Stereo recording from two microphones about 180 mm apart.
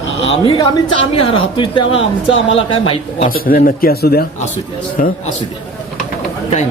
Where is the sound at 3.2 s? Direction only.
55° left (ahead or behind).